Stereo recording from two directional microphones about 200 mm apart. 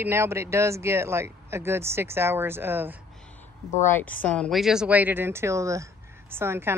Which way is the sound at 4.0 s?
5° left (ahead or behind).